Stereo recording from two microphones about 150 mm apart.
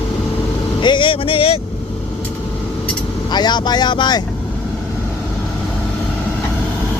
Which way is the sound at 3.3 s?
30° left (ahead or behind).